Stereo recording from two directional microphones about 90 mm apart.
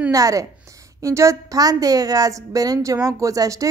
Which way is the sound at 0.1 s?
40° right (ahead or behind).